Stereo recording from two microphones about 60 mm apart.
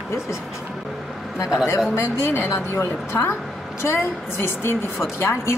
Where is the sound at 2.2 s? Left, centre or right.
Left.